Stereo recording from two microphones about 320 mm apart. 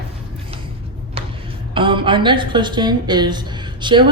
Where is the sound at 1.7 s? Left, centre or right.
Centre.